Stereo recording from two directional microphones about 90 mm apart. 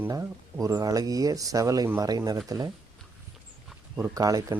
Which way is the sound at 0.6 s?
40° right (ahead or behind).